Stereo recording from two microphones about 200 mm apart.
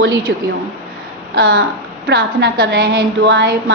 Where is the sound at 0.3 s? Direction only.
55° right (ahead or behind).